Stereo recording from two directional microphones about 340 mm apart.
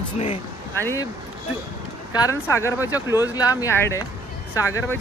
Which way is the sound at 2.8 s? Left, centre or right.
Centre.